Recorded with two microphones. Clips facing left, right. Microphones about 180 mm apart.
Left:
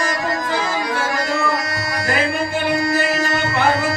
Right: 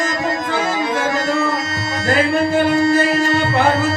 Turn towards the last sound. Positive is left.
turn(degrees=-25)  # may be behind; listen again after turning